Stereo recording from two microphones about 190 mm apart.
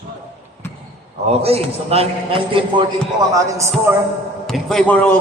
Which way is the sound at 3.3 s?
15° right (ahead or behind).